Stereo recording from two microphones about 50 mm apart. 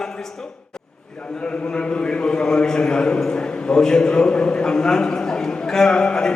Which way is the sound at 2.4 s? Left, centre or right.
Centre.